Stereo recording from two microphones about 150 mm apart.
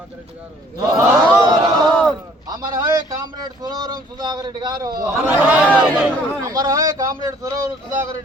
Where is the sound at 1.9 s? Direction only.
5° left (ahead or behind).